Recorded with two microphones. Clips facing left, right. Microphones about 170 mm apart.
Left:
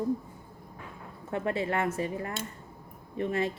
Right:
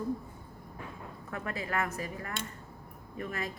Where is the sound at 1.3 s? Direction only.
25° left (ahead or behind).